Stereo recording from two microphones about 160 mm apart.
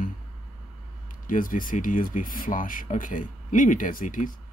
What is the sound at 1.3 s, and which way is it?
Speech, 60° left (ahead or behind).